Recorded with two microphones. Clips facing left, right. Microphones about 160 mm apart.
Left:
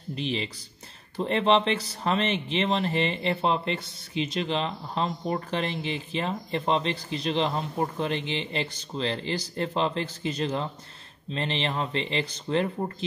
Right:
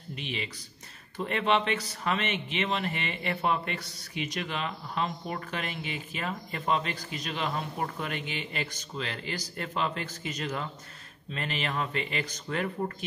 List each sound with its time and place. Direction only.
0.1 s speech: 30° left (ahead or behind)